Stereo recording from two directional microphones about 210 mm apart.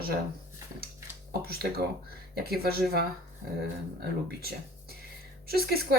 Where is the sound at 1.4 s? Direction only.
50° right (ahead or behind).